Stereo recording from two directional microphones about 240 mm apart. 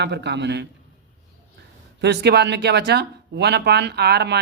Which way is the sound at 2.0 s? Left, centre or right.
Right.